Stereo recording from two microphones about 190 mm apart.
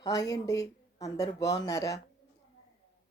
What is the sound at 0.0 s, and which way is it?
Speech, 20° left (ahead or behind).